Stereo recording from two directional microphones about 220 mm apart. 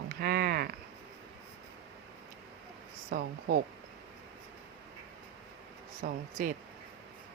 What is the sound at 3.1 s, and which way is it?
Speech, 40° right (ahead or behind).